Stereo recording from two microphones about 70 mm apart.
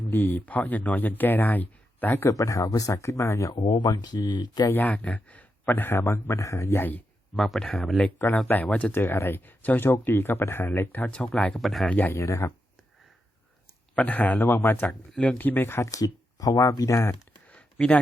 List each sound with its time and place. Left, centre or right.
0.1 s speech: left
2.3 s speech: left
2.9 s speech: left
3.5 s speech: left
4.7 s speech: left
7.3 s speech: centre
8.4 s speech: left
8.9 s speech: left
10.7 s speech: left
11.5 s speech: centre
12.1 s speech: left
13.9 s speech: left
15.8 s speech: left
17.5 s a sound: centre